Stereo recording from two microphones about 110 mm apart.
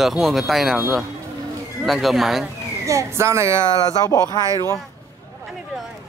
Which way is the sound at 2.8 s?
25° right (ahead or behind).